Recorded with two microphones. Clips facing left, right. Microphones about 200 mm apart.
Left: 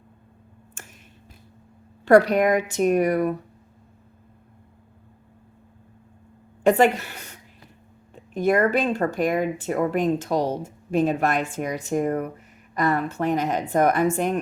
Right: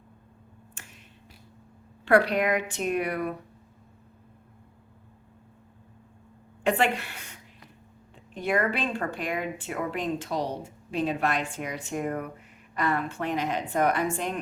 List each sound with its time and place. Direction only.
2.0 s speech: 40° left (ahead or behind)
6.7 s a woman's voice: 40° left (ahead or behind)
8.3 s speech: 40° left (ahead or behind)